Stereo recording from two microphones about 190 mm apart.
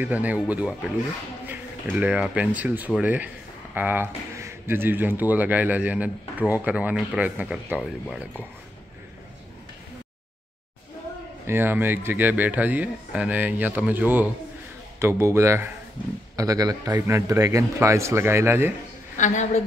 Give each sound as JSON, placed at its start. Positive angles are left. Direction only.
{"t": 0.0, "sound": "speech", "side_deg": -10}
{"t": 11.4, "sound": "speech", "side_deg": -10}
{"t": 19.1, "sound": "a woman's voice", "side_deg": 40}